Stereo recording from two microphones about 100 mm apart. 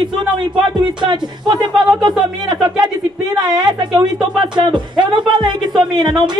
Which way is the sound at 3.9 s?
50° right (ahead or behind).